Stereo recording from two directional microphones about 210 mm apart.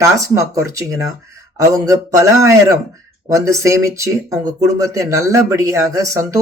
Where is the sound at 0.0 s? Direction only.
15° right (ahead or behind).